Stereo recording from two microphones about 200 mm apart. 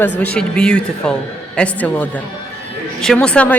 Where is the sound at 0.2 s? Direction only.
5° left (ahead or behind).